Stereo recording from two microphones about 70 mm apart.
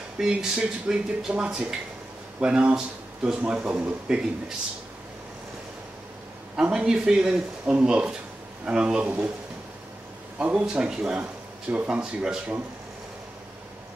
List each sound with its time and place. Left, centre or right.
0.2 s speech: centre
6.7 s a man's voice: centre
10.4 s speech: centre